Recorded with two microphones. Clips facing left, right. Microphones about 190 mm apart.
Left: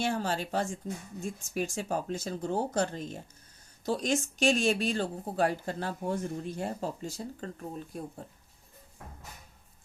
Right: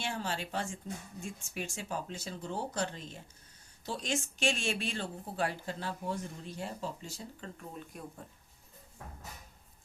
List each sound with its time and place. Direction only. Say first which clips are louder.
0.0 s speech: left 6 dB; 40° left (ahead or behind)